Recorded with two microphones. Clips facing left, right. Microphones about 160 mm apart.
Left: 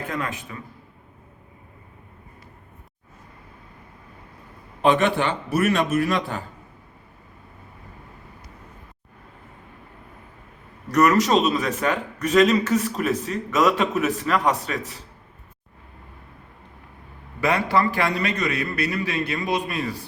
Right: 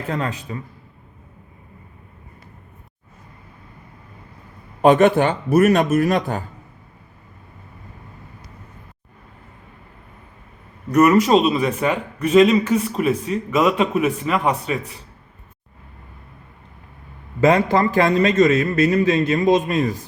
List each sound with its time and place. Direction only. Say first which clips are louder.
0.1 s a man's voice: right 8 dB; 30° right (ahead or behind)
4.8 s speech: right 6 dB; 45° right (ahead or behind)
10.9 s a man's voice: right 4 dB; 20° right (ahead or behind)
17.4 s a man's voice: right 5 dB; 20° right (ahead or behind)